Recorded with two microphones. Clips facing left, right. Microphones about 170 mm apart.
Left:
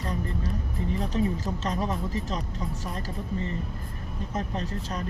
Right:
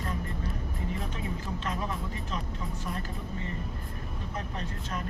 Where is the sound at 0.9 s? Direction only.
35° left (ahead or behind).